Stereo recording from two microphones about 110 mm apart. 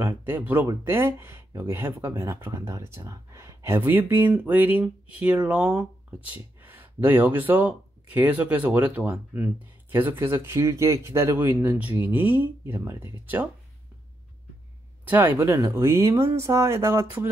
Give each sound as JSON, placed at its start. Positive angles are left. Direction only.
{"t": 0.0, "sound": "speech", "side_deg": -20}
{"t": 15.0, "sound": "speech", "side_deg": -20}